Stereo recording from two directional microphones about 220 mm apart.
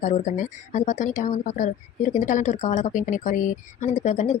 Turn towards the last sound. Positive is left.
turn(degrees=30)  # may be behind; listen again after turning